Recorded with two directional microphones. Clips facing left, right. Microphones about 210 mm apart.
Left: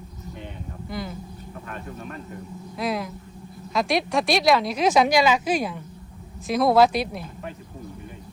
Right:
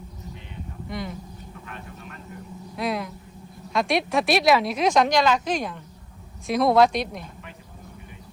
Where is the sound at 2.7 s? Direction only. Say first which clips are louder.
Even; centre (ahead or behind).